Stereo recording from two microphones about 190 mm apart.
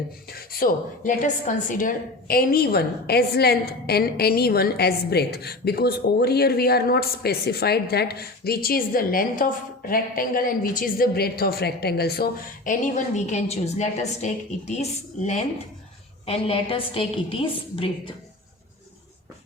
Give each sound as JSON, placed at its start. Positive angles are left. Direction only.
{"t": 0.3, "sound": "a woman's voice", "side_deg": 50}